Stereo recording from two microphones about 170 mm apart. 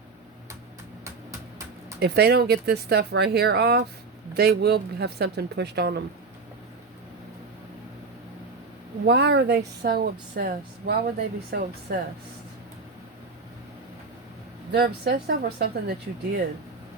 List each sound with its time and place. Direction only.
1.0 s vehicle: 15° right (ahead or behind)
2.0 s speech: 75° right (ahead or behind)
9.0 s speech: 85° right; by 11.9 s 65° right (ahead or behind)
14.7 s speech: 70° right (ahead or behind)